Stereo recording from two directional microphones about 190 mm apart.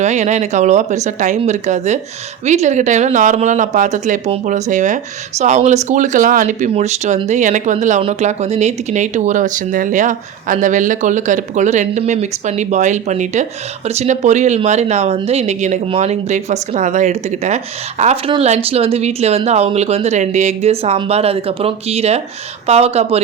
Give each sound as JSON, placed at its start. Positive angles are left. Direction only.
{"t": 0.0, "sound": "speech", "side_deg": -35}